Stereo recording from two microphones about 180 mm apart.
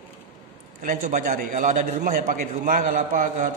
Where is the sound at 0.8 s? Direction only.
45° right (ahead or behind).